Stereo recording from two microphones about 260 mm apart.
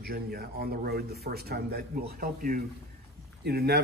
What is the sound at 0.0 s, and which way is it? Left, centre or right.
A man's voice, right.